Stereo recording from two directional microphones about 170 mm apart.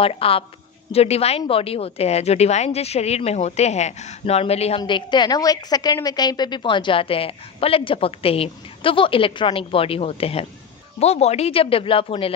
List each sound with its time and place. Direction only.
0.0 s a woman's voice: 35° left (ahead or behind)